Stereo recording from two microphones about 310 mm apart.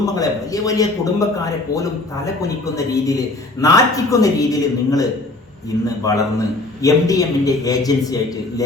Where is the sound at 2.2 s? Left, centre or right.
Centre.